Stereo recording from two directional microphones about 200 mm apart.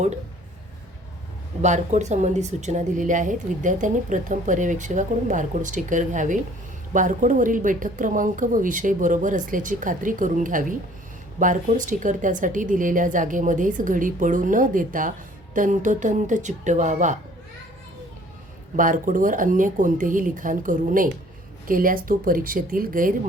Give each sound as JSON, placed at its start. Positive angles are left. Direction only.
{"t": 1.6, "sound": "a woman's voice", "side_deg": -35}
{"t": 18.8, "sound": "a woman's voice", "side_deg": -40}